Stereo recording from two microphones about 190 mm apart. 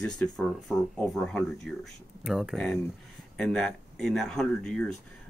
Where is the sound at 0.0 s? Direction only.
5° left (ahead or behind).